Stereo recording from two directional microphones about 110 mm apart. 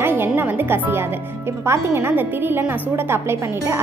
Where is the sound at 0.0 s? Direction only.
20° right (ahead or behind).